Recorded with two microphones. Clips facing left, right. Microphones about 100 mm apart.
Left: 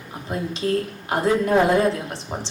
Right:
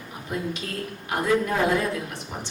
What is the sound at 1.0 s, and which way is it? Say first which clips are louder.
Speech: left 2 dB; 30° left (ahead or behind).